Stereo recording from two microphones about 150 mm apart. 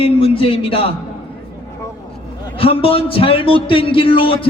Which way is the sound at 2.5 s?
40° left (ahead or behind).